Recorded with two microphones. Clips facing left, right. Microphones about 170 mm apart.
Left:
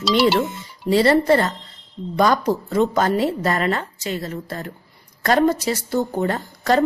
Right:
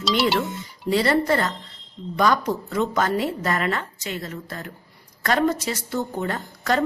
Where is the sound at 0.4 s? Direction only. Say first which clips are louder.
Left 4 dB; 30° left (ahead or behind).